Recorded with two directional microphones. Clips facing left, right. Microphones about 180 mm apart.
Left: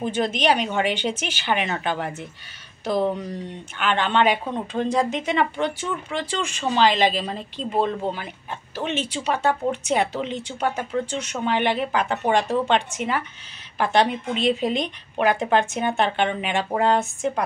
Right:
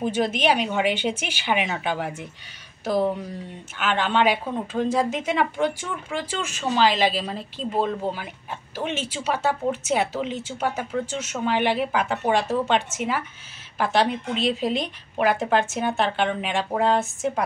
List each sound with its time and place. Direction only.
0.0 s speech: 10° right (ahead or behind)
8.7 s speech: 10° right (ahead or behind)